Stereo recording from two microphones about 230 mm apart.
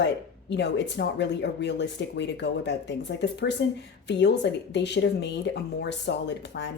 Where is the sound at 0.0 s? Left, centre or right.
Left.